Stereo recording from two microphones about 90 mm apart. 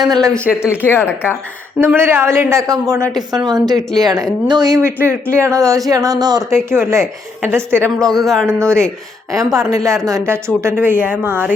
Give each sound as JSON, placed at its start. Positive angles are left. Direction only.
{"t": 0.0, "sound": "speech", "side_deg": 5}
{"t": 0.6, "sound": "speech", "side_deg": -15}
{"t": 0.9, "sound": "speech", "side_deg": 25}
{"t": 1.8, "sound": "a woman's voice", "side_deg": -30}
{"t": 3.2, "sound": "a woman's voice", "side_deg": -50}
{"t": 4.8, "sound": "a woman's voice", "side_deg": -30}
{"t": 6.5, "sound": "a woman's voice", "side_deg": -30}
{"t": 8.2, "sound": "speech", "side_deg": 5}
{"t": 8.4, "sound": "a woman's voice", "side_deg": -30}